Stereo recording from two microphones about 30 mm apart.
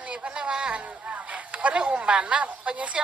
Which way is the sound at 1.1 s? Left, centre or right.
Right.